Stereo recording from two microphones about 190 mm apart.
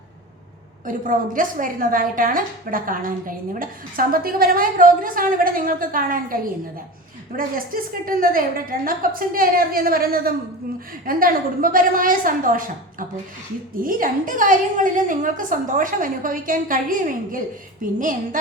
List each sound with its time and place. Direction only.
0.9 s a woman's voice: 45° right (ahead or behind)